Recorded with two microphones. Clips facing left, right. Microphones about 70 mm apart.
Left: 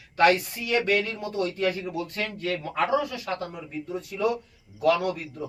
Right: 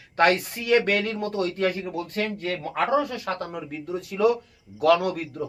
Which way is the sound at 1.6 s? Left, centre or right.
Right.